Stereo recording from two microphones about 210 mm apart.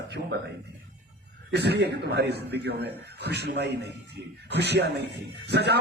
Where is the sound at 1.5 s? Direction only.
55° right (ahead or behind).